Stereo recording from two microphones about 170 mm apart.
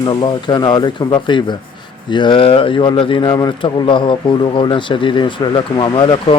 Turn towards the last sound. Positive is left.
turn(degrees=30)  # may be behind; listen again after turning